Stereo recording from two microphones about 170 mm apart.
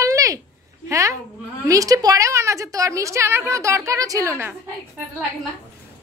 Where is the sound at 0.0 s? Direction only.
20° right (ahead or behind).